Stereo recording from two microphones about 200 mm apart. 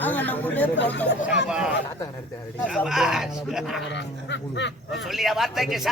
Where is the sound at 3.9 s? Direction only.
60° left (ahead or behind).